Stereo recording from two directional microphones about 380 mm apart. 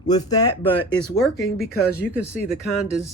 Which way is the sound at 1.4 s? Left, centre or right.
Left.